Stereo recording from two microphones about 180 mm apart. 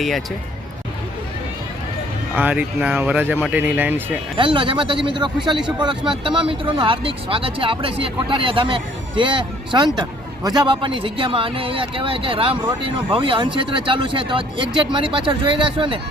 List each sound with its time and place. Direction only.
2.3 s speech: 10° right (ahead or behind)
4.4 s speech: 30° right (ahead or behind)